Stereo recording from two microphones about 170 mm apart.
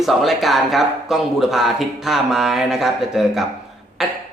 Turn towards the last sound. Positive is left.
turn(degrees=0)  # may be behind; listen again after turning